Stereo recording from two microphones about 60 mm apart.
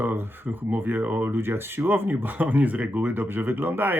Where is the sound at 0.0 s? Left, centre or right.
Right.